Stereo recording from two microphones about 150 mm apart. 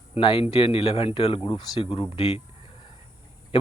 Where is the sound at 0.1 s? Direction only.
35° left (ahead or behind).